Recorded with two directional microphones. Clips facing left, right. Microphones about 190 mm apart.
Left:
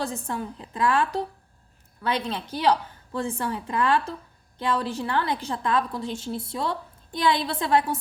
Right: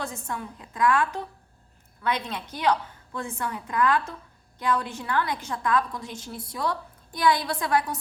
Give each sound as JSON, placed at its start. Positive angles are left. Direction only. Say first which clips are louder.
{"t": 0.0, "sound": "a woman's voice", "louder": "left 4 dB", "side_deg": 35}